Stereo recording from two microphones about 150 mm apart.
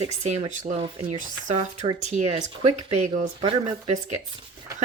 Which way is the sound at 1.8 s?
50° right (ahead or behind).